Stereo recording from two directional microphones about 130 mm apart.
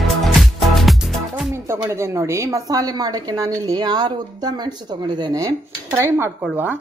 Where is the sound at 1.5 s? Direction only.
20° right (ahead or behind).